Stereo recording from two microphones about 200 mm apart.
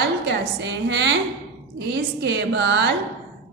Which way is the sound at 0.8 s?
60° right (ahead or behind).